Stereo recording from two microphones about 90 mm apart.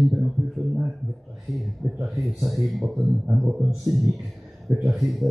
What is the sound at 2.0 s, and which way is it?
Speech, centre (ahead or behind).